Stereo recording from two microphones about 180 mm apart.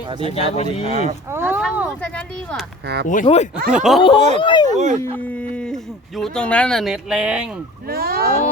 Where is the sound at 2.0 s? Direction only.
5° left (ahead or behind).